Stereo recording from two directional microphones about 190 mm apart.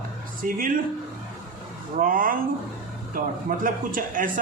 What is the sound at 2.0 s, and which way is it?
Speech, 45° right (ahead or behind).